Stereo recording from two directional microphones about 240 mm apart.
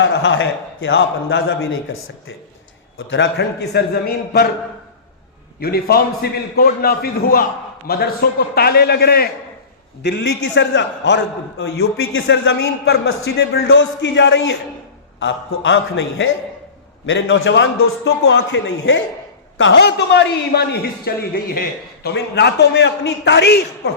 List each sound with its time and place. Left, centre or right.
0.0 s a man's voice: left
5.5 s a man's voice: left